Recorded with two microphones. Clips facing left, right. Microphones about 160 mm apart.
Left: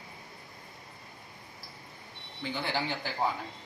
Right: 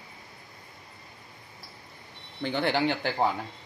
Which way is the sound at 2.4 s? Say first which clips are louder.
Right 7 dB; 65° right (ahead or behind).